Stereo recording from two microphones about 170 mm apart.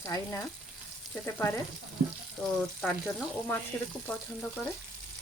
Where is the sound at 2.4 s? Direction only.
5° left (ahead or behind).